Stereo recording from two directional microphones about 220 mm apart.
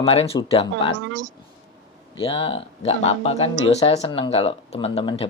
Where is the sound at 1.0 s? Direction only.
55° right (ahead or behind).